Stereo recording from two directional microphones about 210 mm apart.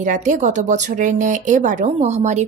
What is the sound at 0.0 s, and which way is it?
A woman's voice, 35° right (ahead or behind).